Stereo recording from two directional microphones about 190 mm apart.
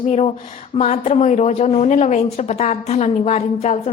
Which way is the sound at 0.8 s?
35° left (ahead or behind).